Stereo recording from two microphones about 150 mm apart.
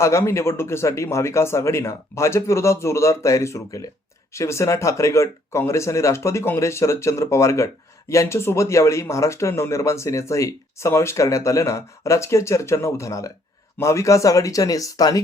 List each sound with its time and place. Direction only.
0.0 s speech: 20° left (ahead or behind)